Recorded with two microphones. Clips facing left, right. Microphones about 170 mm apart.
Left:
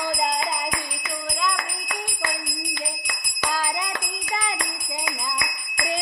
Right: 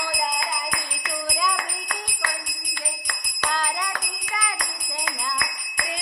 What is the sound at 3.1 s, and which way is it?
Jingle bell, 10° left (ahead or behind).